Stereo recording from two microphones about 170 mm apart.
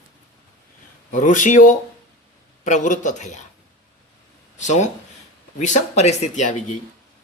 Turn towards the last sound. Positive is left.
turn(degrees=45)  # may be behind; listen again after turning